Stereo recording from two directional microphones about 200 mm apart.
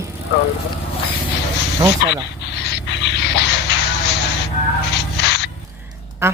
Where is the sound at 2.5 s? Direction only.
60° left (ahead or behind).